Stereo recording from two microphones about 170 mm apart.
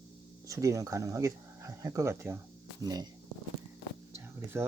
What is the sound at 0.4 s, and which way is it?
Speech, 20° right (ahead or behind).